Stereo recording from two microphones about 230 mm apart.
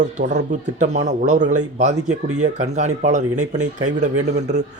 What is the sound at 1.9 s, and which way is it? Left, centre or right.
Speech, right.